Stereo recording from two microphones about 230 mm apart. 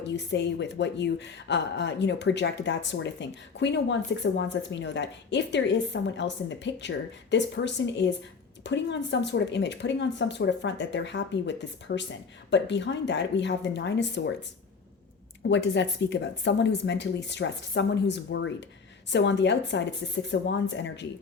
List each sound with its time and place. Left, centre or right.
0.0 s a woman's voice: left
15.4 s a woman's voice: left